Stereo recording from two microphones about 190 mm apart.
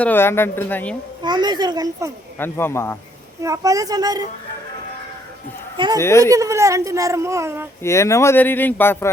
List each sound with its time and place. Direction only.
0.0 s speech: 10° left (ahead or behind)
1.2 s a child's voice: 20° right (ahead or behind)
2.4 s speech: 10° left (ahead or behind)
3.4 s speech: 15° right (ahead or behind)
5.7 s speech: 25° right (ahead or behind)
6.0 s speech: 15° left (ahead or behind)
6.3 s speech: 15° right (ahead or behind)
7.8 s speech: 15° left (ahead or behind)